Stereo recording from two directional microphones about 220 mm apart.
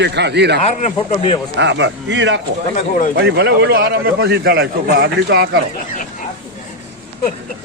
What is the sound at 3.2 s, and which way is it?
A man's voice, 50° right (ahead or behind).